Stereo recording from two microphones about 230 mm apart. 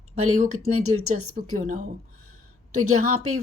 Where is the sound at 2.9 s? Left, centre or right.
Right.